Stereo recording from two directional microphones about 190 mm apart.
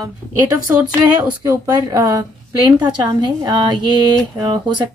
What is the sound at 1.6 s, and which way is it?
A woman's voice, 20° right (ahead or behind).